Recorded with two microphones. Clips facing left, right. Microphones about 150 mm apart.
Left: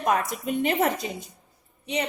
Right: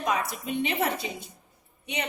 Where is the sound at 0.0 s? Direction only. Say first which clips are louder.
Left 4 dB; 50° left (ahead or behind).